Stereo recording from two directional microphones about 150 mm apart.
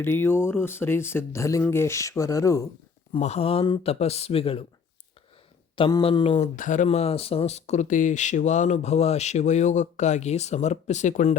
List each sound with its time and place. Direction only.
0.0 s speech: 15° left (ahead or behind)
3.2 s speech: 45° left (ahead or behind)
5.7 s speech: 35° left (ahead or behind)
6.6 s speech: 60° left (ahead or behind)
6.8 s speech: 45° left (ahead or behind)